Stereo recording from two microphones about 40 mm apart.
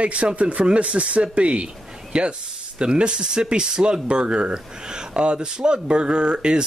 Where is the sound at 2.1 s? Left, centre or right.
Centre.